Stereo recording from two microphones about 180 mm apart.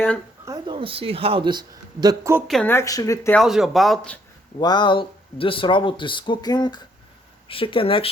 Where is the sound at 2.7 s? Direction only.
20° left (ahead or behind).